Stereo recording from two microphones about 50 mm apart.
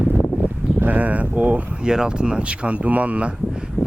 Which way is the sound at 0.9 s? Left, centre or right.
Right.